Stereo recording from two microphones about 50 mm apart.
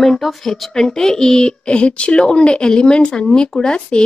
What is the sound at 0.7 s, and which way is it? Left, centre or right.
A woman's voice, centre.